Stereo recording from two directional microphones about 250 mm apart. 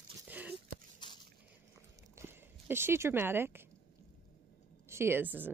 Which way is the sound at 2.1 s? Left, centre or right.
Centre.